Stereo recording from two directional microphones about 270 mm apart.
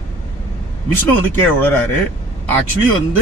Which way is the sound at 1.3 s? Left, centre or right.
Centre.